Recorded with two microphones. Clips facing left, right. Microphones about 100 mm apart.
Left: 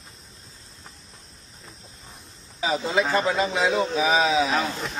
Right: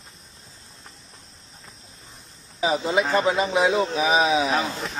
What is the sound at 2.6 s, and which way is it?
A man's voice, 20° right (ahead or behind).